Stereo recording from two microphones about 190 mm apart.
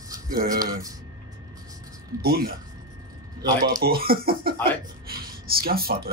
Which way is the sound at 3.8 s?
50° right (ahead or behind).